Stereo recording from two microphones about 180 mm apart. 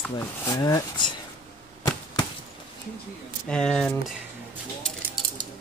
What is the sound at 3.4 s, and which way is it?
Speech, 5° left (ahead or behind).